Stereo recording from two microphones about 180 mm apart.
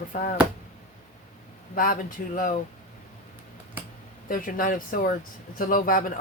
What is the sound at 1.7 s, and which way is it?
Speech, 50° left (ahead or behind).